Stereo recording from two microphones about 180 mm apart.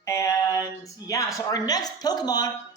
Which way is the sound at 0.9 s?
20° left (ahead or behind).